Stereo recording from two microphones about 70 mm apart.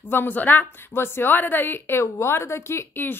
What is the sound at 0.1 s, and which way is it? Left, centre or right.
A woman's voice, left.